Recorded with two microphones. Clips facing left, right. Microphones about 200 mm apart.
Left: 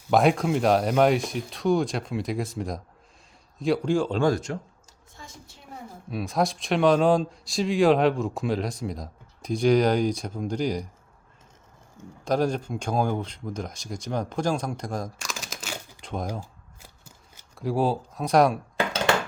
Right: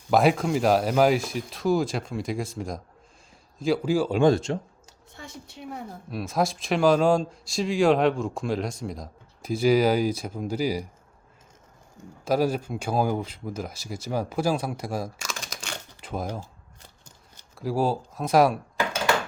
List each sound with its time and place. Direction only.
0.1 s speech: centre (ahead or behind)
4.2 s speech: 25° right (ahead or behind)
5.1 s a woman's voice: 65° right (ahead or behind)
6.1 s speech: centre (ahead or behind)
12.2 s speech: 5° right (ahead or behind)